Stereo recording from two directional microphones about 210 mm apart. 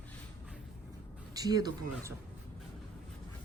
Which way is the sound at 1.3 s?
20° right (ahead or behind).